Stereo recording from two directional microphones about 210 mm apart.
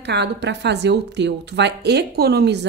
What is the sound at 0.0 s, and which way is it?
A woman's voice, 55° right (ahead or behind).